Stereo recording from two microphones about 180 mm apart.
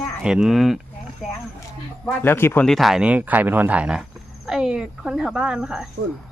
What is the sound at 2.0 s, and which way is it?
Speech, 10° left (ahead or behind).